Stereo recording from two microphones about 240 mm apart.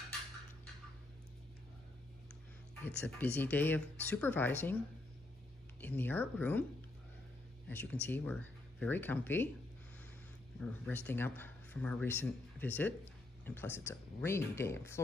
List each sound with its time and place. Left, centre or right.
2.8 s speech: centre
5.8 s speech: centre
7.6 s speech: centre
10.6 s speech: centre